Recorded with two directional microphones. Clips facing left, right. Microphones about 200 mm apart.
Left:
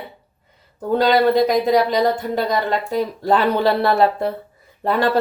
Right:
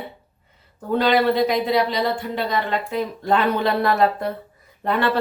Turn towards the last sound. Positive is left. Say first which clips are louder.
# left 2 dB
turn(degrees=35)  # may be behind; listen again after turning